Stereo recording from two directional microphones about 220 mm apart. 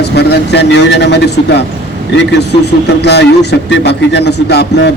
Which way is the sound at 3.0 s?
50° left (ahead or behind).